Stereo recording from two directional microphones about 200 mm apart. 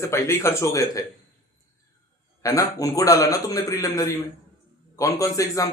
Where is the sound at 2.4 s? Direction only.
15° left (ahead or behind).